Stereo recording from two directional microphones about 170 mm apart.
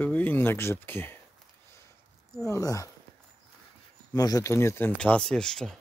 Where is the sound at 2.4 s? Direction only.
20° left (ahead or behind).